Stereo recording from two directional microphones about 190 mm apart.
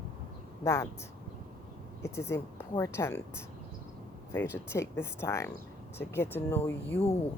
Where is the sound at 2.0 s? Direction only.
15° left (ahead or behind).